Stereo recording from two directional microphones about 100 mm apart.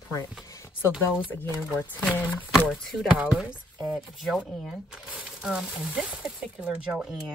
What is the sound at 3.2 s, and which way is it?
Speech, 5° right (ahead or behind).